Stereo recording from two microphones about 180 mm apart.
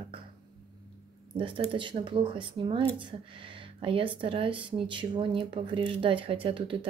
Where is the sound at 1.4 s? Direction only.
30° right (ahead or behind).